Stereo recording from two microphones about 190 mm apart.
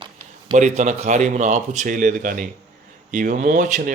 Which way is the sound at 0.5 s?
40° right (ahead or behind).